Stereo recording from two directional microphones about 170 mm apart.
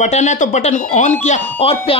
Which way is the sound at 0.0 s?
40° left (ahead or behind).